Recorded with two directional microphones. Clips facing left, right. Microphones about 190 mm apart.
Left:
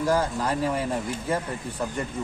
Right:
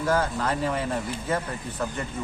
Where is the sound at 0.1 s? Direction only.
15° left (ahead or behind).